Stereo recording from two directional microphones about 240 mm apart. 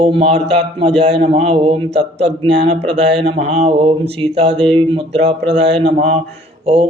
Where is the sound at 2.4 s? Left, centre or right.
Right.